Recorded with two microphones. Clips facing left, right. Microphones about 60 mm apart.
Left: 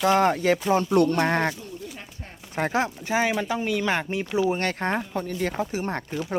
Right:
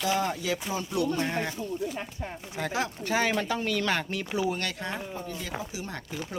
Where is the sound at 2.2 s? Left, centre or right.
Right.